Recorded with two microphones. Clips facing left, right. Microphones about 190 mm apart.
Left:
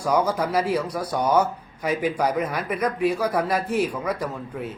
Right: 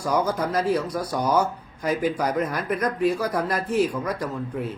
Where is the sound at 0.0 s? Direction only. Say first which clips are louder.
Left 1 dB; 10° left (ahead or behind).